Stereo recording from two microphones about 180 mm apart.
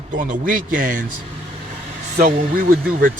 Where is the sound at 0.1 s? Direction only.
45° right (ahead or behind).